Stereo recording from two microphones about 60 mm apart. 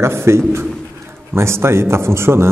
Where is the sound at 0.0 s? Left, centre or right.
Right.